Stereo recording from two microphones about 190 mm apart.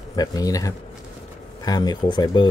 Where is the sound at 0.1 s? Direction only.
20° left (ahead or behind).